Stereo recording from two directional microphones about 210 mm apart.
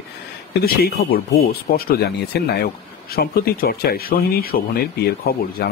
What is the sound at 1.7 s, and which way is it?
Speech, 45° left (ahead or behind).